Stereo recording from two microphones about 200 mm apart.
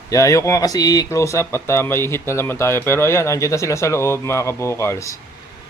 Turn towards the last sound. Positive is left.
turn(degrees=15)  # may be behind; listen again after turning